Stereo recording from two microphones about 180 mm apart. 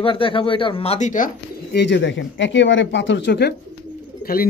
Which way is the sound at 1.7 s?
75° left (ahead or behind).